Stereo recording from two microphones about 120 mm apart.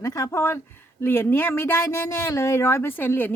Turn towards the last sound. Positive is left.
turn(degrees=15)  # may be behind; listen again after turning